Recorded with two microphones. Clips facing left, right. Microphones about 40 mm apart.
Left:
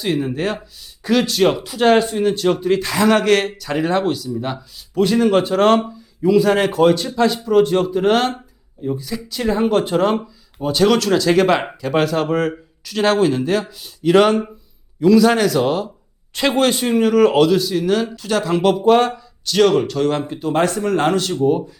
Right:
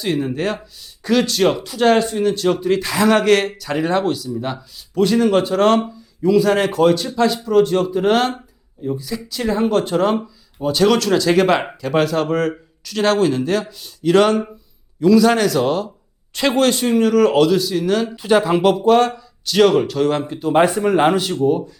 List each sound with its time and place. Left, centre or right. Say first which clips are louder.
0.0 s speech: even; centre
18.2 s speech: right 4 dB; centre
18.9 s speech: left 1 dB; centre
19.5 s speech: right 1 dB; centre
20.5 s speech: right 3 dB; centre
21.4 s speech: left 1 dB; centre